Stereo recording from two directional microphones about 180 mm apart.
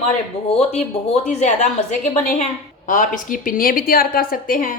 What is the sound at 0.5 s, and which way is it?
Speech, 35° left (ahead or behind).